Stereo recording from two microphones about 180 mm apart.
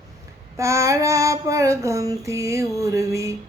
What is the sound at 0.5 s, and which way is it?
Child singing, 15° right (ahead or behind).